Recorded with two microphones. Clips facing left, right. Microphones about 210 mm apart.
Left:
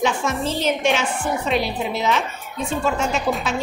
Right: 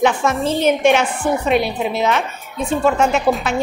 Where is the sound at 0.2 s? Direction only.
65° right (ahead or behind).